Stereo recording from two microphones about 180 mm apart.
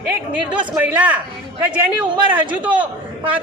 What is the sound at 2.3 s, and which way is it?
Speech, 10° right (ahead or behind).